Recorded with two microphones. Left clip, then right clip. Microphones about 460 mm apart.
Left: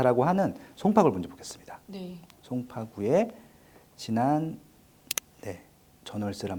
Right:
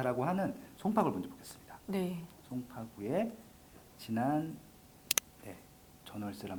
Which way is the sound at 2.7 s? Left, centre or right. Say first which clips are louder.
Left 13 dB; left.